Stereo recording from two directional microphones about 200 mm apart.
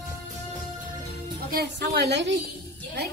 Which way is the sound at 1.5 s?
55° right (ahead or behind).